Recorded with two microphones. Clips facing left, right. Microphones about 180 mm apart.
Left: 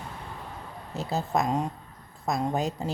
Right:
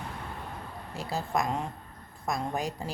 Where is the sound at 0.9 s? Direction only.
25° left (ahead or behind).